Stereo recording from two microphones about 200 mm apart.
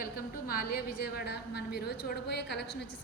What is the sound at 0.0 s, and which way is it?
A woman's voice, 45° left (ahead or behind).